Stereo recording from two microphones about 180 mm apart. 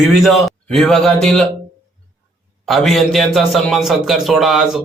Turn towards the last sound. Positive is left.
turn(degrees=0)  # may be behind; listen again after turning